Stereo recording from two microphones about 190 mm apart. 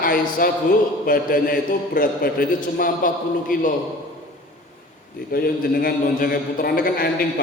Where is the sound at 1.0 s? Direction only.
50° left (ahead or behind).